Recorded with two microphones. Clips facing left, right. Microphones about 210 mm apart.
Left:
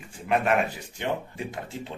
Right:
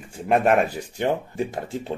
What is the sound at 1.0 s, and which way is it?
Speech, 40° right (ahead or behind).